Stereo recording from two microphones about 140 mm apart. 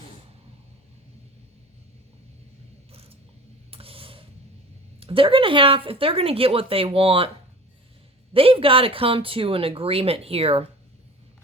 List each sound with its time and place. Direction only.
2.9 s mechanisms: 45° right (ahead or behind)
3.7 s a sound: 40° right (ahead or behind)
4.9 s speech: 40° right (ahead or behind)
8.3 s speech: 40° right (ahead or behind)